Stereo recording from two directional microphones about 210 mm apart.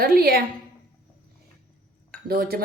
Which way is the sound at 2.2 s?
45° right (ahead or behind).